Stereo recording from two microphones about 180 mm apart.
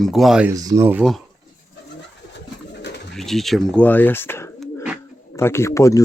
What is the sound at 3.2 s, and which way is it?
Speech, centre (ahead or behind).